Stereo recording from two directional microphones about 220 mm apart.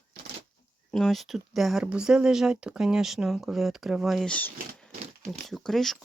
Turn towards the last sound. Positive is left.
turn(degrees=0)  # may be behind; listen again after turning